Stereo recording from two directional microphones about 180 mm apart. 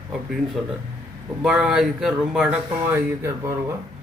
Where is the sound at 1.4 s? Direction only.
5° right (ahead or behind).